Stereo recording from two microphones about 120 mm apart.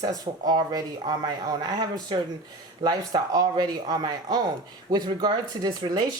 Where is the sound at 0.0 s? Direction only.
35° right (ahead or behind).